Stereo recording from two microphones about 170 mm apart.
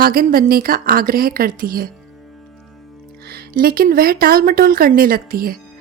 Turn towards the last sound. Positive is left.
turn(degrees=-60)  # may be behind; listen again after turning